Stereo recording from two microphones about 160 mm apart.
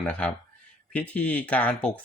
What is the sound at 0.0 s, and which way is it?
Speech, 10° left (ahead or behind).